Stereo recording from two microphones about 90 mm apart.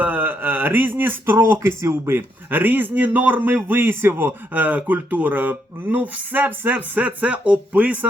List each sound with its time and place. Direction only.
0.0 s a man's voice: 20° right (ahead or behind)